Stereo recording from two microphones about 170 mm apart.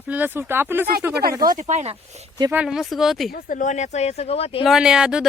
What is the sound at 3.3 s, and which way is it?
Speech, 55° left (ahead or behind).